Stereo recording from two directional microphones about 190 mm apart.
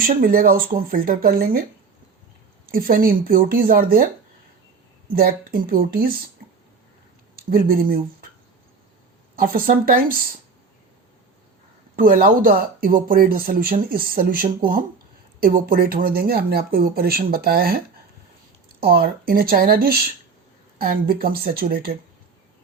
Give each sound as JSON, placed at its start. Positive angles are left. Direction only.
{"t": 0.0, "sound": "speech", "side_deg": -45}
{"t": 2.7, "sound": "speech", "side_deg": -50}
{"t": 5.1, "sound": "speech", "side_deg": -50}
{"t": 7.3, "sound": "speech", "side_deg": -50}
{"t": 9.3, "sound": "speech", "side_deg": -50}
{"t": 11.9, "sound": "speech", "side_deg": -50}